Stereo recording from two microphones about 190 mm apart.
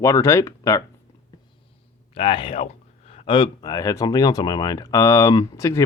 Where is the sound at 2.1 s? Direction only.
30° left (ahead or behind).